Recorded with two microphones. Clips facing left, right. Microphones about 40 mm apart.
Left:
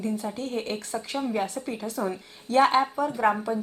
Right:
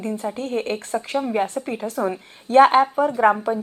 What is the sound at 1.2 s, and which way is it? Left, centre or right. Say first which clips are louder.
Speech: right 5 dB; right.